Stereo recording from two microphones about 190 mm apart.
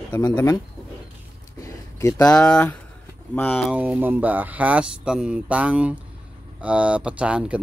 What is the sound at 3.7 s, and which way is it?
Speech, 5° right (ahead or behind).